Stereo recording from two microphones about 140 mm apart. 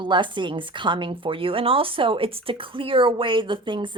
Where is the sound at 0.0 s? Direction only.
35° right (ahead or behind).